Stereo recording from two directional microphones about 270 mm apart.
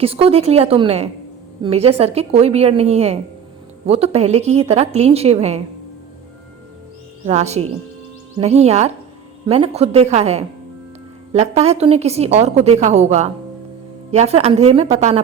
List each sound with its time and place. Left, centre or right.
0.0 s a woman's voice: right
7.3 s a woman's voice: right